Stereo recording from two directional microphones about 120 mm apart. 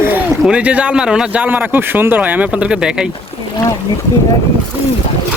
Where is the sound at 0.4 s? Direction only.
10° right (ahead or behind).